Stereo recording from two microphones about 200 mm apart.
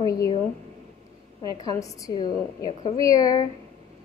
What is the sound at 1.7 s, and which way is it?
A woman's voice, 15° left (ahead or behind).